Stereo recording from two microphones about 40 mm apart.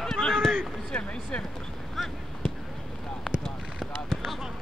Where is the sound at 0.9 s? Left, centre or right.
Left.